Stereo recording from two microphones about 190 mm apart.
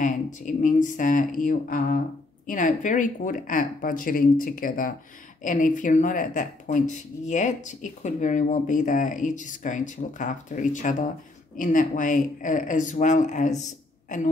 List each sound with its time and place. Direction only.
0.0 s speech: 40° left (ahead or behind)